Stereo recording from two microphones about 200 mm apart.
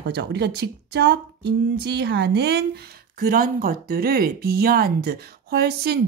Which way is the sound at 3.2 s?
45° right (ahead or behind).